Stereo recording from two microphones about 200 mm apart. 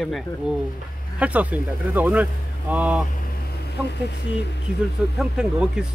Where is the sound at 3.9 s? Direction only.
60° left (ahead or behind).